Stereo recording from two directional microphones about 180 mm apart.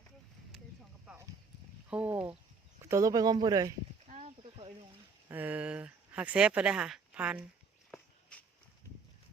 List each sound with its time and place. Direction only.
1.0 s clip-clop: 15° right (ahead or behind)
1.9 s speech: 5° right (ahead or behind)
2.9 s speech: 20° right (ahead or behind)
4.0 s a sound: 40° right (ahead or behind)
5.3 s speech: 10° right (ahead or behind)
7.9 s walk: 5° left (ahead or behind)